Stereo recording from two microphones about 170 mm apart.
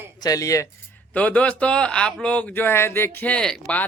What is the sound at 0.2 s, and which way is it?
Speech, 20° left (ahead or behind).